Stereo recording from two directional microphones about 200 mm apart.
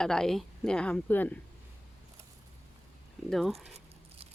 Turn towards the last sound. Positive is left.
turn(degrees=0)  # may be behind; listen again after turning